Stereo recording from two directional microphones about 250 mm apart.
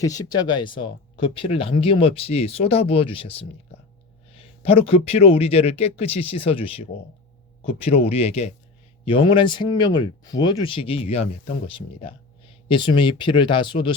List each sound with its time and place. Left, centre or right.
0.0 s speech: centre